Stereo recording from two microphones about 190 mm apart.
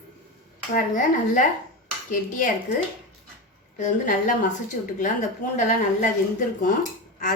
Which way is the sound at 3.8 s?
40° left (ahead or behind).